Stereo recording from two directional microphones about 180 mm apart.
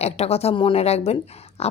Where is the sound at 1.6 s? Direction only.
35° left (ahead or behind).